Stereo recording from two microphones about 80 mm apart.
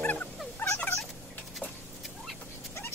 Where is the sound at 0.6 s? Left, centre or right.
Left.